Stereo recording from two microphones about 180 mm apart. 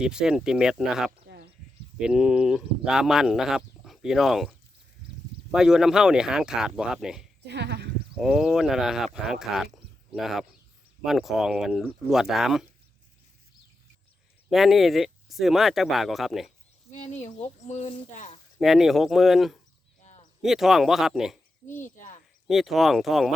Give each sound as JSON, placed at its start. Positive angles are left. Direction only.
{"t": 0.0, "sound": "speech", "side_deg": -5}
{"t": 7.4, "sound": "speech", "side_deg": -70}
{"t": 8.1, "sound": "speech", "side_deg": 0}
{"t": 9.7, "sound": "a sound", "side_deg": 0}
{"t": 11.0, "sound": "speech", "side_deg": 0}
{"t": 14.5, "sound": "speech", "side_deg": 0}
{"t": 16.9, "sound": "speech", "side_deg": 40}
{"t": 18.6, "sound": "speech", "side_deg": 0}
{"t": 21.7, "sound": "speech", "side_deg": 45}
{"t": 22.4, "sound": "speech", "side_deg": 0}